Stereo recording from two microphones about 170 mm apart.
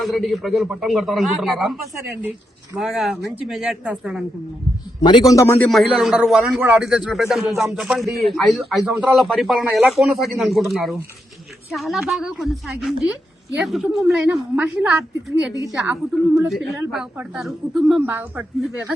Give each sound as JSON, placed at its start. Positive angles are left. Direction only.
{"t": 0.0, "sound": "a man's voice", "side_deg": 0}
{"t": 5.0, "sound": "a man's voice", "side_deg": 25}
{"t": 5.6, "sound": "a man's voice", "side_deg": 0}